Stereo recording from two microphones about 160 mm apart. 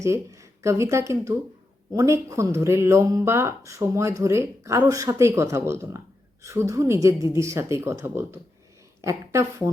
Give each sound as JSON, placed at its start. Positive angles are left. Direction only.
{"t": 0.0, "sound": "speech", "side_deg": -20}